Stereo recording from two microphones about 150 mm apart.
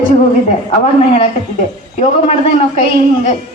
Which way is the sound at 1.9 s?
50° left (ahead or behind).